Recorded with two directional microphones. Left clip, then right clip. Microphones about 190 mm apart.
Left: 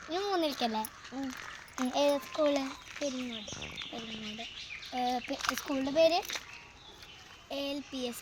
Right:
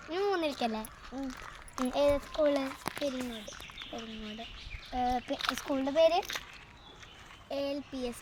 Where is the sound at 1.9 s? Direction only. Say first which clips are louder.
Right 1 dB; 20° right (ahead or behind).